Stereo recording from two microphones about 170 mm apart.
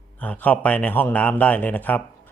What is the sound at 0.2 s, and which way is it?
Speech, 10° left (ahead or behind).